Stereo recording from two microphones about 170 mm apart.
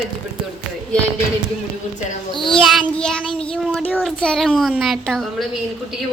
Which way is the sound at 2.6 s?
Centre (ahead or behind).